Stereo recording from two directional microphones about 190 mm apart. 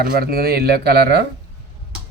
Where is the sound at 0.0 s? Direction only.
55° right (ahead or behind).